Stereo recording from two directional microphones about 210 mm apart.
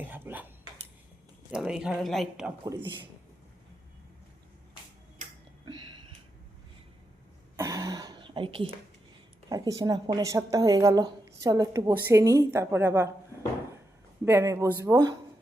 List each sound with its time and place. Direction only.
0.1 s a sound: 10° right (ahead or behind)
1.5 s speech: 5° right (ahead or behind)
2.6 s a man's voice: 20° right (ahead or behind)
7.5 s throat clearing: 15° right (ahead or behind)
9.5 s speech: 15° right (ahead or behind)
14.3 s speech: 15° right (ahead or behind)